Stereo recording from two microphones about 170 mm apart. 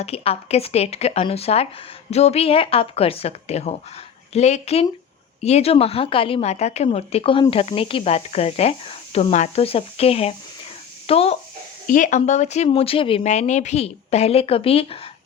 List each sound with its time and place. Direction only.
0.0 s speech: 35° left (ahead or behind)
11.9 s speech: 50° left (ahead or behind)